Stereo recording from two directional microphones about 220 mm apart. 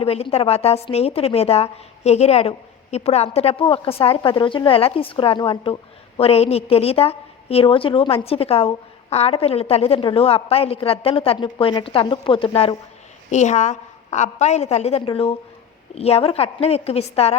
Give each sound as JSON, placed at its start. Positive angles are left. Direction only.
{"t": 0.0, "sound": "a woman's voice", "side_deg": 25}